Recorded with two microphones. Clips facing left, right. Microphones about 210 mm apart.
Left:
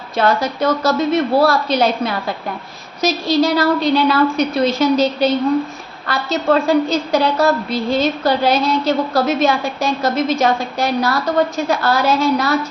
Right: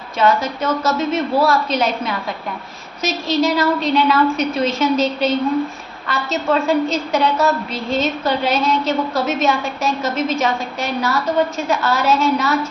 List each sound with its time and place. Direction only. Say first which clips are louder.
0.2 s a woman's voice: left 1 dB; 35° left (ahead or behind)